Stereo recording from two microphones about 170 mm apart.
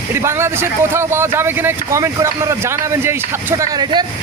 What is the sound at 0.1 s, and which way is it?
A man's voice, 15° right (ahead or behind).